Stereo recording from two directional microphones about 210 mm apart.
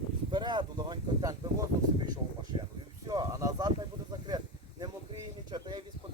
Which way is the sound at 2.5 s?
25° right (ahead or behind).